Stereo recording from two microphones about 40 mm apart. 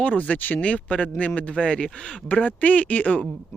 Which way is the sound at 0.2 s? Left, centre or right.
Left.